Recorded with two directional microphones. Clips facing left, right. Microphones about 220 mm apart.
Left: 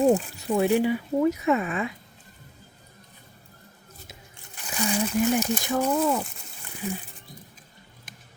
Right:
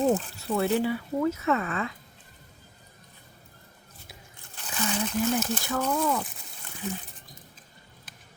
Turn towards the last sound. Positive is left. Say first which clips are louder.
# left 2 dB
turn(degrees=10)  # may be behind; listen again after turning